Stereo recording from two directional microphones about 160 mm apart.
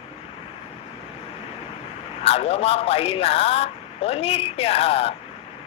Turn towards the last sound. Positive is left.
turn(degrees=40)  # may be behind; listen again after turning